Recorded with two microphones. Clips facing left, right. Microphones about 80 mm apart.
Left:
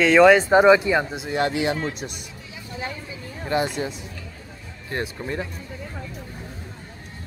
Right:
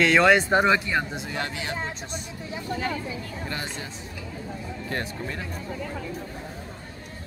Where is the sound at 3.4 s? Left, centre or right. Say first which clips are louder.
Left 13 dB; centre.